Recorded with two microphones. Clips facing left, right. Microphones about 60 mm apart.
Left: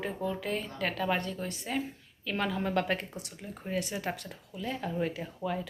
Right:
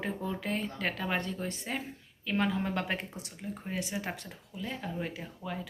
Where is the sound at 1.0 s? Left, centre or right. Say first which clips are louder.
Left 2 dB; centre.